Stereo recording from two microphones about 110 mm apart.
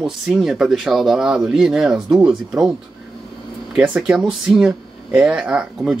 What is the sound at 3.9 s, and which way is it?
Speech, 5° right (ahead or behind).